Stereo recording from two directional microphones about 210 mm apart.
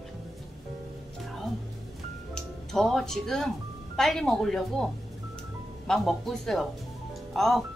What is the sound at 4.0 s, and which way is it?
Speech, centre (ahead or behind).